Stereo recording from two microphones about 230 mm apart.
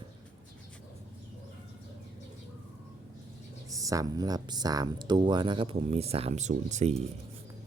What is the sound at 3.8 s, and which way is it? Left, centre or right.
Speech, centre.